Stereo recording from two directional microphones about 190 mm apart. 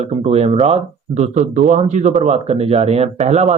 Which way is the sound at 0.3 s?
35° right (ahead or behind).